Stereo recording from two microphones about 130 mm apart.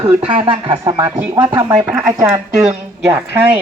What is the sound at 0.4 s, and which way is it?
Speech, 35° right (ahead or behind).